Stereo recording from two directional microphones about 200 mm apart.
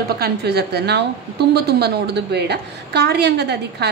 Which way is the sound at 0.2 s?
55° right (ahead or behind).